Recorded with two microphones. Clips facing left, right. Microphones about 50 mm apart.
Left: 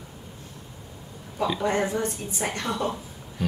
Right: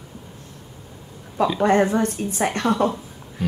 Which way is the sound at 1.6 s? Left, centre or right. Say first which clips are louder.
Right 9 dB; right.